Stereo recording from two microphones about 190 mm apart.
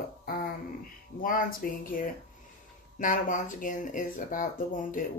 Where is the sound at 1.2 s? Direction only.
50° left (ahead or behind).